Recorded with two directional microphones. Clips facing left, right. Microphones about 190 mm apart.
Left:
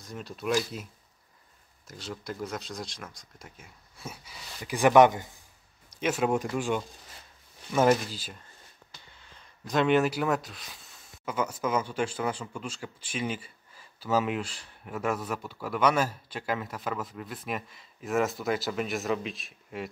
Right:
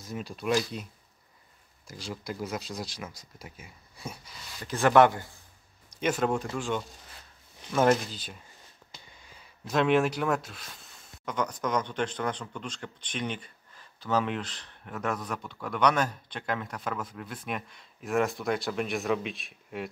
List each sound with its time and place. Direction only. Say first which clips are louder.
0.0 s speech: right 1 dB; centre (ahead or behind)
1.9 s speech: right 1 dB; centre (ahead or behind); by 5.3 s 15° left (ahead or behind)
5.9 s speech: left 1 dB; 5° left (ahead or behind)
9.1 s speech: right 1 dB; 10° right (ahead or behind)